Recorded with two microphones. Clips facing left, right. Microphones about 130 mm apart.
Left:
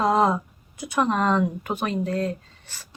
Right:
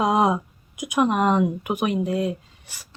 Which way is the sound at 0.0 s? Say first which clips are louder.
Even; 15° right (ahead or behind).